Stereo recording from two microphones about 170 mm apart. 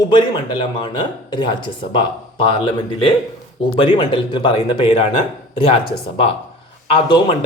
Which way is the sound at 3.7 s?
30° left (ahead or behind).